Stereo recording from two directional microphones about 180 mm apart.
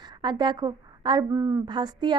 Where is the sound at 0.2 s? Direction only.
25° right (ahead or behind).